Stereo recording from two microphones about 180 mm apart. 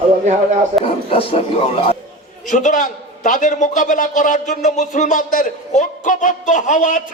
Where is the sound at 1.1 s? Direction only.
30° left (ahead or behind).